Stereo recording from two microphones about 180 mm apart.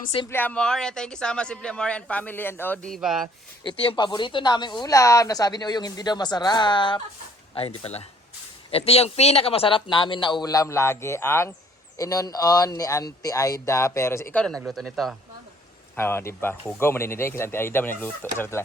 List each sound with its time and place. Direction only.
0.3 s a man's voice: 10° left (ahead or behind)
3.6 s a man's voice: 30° left (ahead or behind); by 15.1 s centre (ahead or behind)
16.0 s speech: 15° left (ahead or behind)